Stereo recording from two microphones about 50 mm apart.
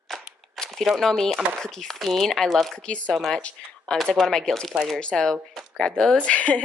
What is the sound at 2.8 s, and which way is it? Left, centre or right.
Speech, left.